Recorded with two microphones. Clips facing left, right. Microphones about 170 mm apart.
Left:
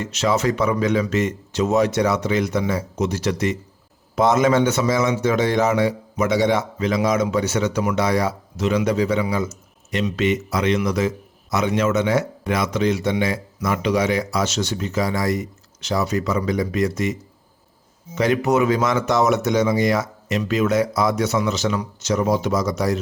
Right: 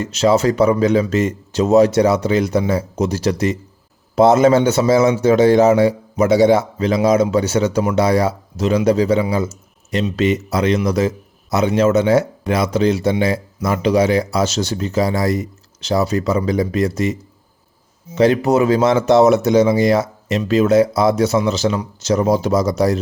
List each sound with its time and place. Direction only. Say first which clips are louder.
0.0 s a man's voice: right 6 dB; 35° right (ahead or behind)